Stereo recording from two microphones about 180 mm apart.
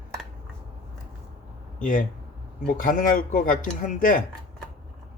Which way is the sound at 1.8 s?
45° left (ahead or behind).